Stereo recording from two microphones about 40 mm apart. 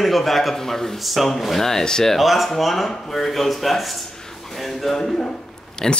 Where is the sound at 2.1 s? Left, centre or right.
Centre.